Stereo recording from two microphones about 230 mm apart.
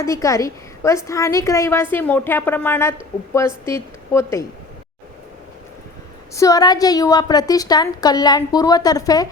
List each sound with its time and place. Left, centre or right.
0.0 s a woman's voice: centre
6.3 s a woman's voice: centre